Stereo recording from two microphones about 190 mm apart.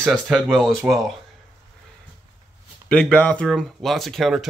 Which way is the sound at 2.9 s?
5° left (ahead or behind).